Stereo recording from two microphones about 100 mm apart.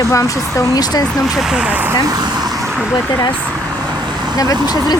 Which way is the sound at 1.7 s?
20° right (ahead or behind).